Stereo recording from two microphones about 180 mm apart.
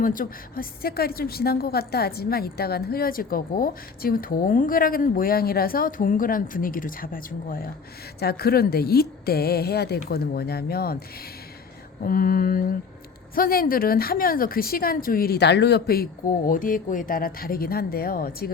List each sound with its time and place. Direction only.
0.0 s a woman's voice: 50° left (ahead or behind)
12.0 s a woman's voice: 50° left (ahead or behind)